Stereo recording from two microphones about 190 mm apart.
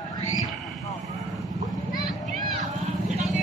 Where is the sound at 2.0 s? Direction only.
Centre (ahead or behind).